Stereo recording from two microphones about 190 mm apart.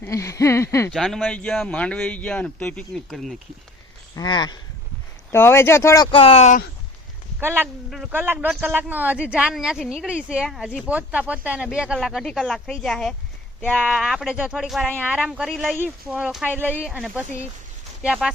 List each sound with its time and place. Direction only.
0.0 s speech: 15° left (ahead or behind)
0.9 s a man's voice: centre (ahead or behind)
4.1 s speech: 20° left (ahead or behind)
6.1 s speech: 30° left (ahead or behind)
7.3 s a man's voice: 10° right (ahead or behind)